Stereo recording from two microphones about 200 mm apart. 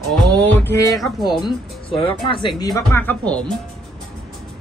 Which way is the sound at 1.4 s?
25° left (ahead or behind).